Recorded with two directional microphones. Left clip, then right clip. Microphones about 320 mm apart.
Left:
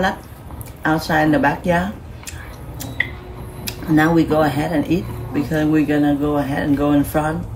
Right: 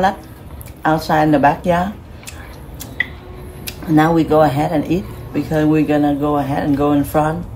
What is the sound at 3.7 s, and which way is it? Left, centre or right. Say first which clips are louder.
Speech: right 2 dB; centre.